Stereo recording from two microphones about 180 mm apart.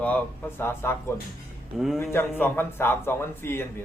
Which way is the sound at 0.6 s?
15° left (ahead or behind).